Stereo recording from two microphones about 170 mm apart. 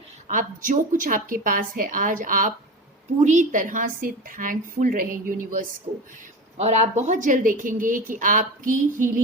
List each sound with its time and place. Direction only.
0.3 s speech: 50° right (ahead or behind)
6.6 s speech: 40° right (ahead or behind)